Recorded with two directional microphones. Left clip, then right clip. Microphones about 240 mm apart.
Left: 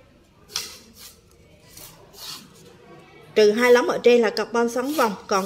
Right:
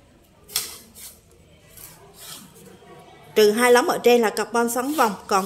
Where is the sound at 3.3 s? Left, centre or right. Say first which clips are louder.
Even; centre.